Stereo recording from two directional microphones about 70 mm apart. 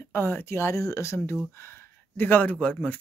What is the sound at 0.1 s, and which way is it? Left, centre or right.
Speech, left.